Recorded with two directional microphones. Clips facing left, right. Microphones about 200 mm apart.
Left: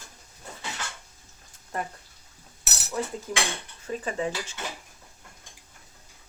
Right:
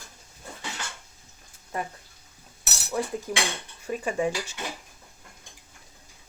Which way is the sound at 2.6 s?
Centre (ahead or behind).